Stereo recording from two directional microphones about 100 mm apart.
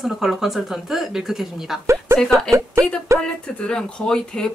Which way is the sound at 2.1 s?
25° right (ahead or behind).